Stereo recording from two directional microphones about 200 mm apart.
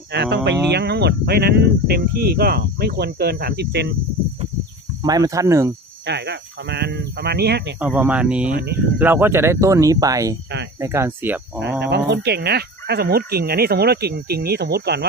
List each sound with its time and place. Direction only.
0.1 s speech: 55° right (ahead or behind)
5.0 s speech: 20° right (ahead or behind)
6.1 s speech: 55° right (ahead or behind)
7.8 s speech: 5° right (ahead or behind)
11.8 s speech: 55° right (ahead or behind)